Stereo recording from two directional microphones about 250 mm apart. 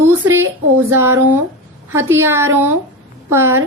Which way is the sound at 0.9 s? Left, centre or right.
Centre.